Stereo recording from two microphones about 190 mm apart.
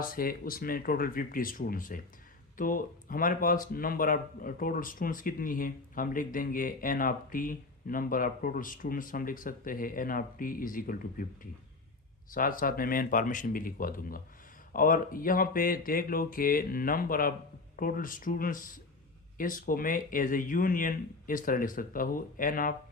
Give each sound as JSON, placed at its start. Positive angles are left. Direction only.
{"t": 0.0, "sound": "speech", "side_deg": 50}
{"t": 12.3, "sound": "speech", "side_deg": 45}